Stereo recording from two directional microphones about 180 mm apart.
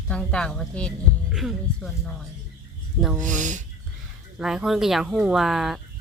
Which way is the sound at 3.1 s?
45° right (ahead or behind).